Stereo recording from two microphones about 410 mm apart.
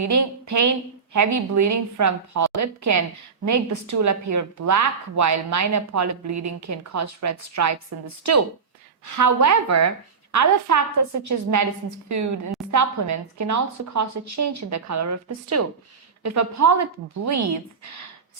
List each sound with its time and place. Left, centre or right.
0.0 s a woman's voice: right